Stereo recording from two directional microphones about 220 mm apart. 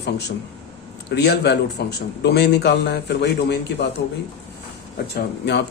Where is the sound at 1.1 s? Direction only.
50° left (ahead or behind).